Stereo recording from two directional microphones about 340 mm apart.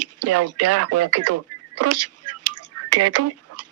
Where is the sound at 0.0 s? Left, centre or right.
Right.